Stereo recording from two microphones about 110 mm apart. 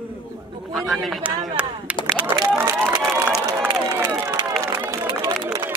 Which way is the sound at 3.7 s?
30° right (ahead or behind).